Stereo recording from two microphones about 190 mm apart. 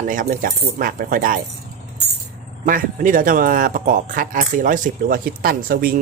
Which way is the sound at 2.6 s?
45° right (ahead or behind).